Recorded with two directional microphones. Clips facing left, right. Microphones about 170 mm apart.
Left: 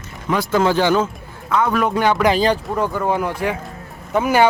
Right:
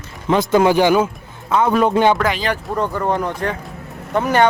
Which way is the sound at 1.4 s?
25° right (ahead or behind).